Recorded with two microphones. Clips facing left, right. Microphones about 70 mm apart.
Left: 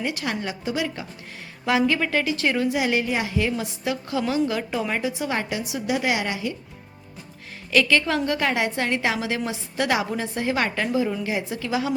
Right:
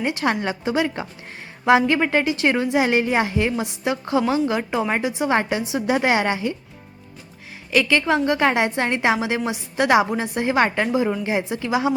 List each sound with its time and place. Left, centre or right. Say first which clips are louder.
0.0 s a woman's voice: right 5 dB; right
7.7 s a woman's voice: right 2 dB; centre